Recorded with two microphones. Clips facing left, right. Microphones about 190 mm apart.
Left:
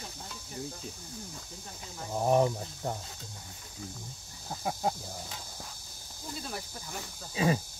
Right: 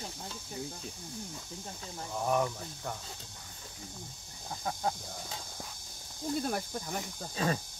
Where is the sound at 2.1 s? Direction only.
30° left (ahead or behind).